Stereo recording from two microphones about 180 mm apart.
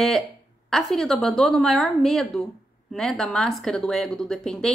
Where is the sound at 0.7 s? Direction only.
Centre (ahead or behind).